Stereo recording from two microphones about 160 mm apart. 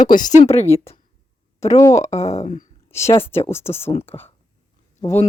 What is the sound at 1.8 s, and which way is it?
Speech, 20° left (ahead or behind).